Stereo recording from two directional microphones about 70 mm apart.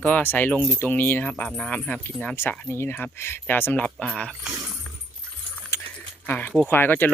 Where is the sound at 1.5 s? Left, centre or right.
Centre.